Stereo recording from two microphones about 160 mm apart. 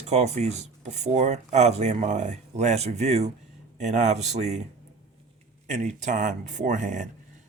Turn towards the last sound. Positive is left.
turn(degrees=-50)  # may be behind; listen again after turning